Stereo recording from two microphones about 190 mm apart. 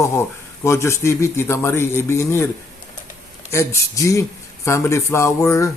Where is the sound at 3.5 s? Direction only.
15° left (ahead or behind).